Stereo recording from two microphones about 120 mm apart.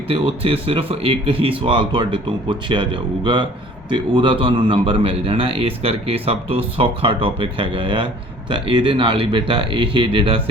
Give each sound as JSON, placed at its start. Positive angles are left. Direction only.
{"t": 0.1, "sound": "a man's voice", "side_deg": -50}